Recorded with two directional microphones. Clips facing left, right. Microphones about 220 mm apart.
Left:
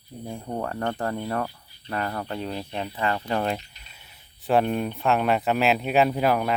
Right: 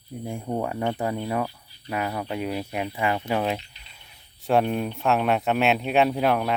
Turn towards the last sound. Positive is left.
turn(degrees=0)  # may be behind; listen again after turning